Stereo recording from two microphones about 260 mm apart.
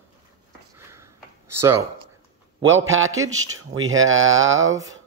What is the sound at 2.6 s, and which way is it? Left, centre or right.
Speech, right.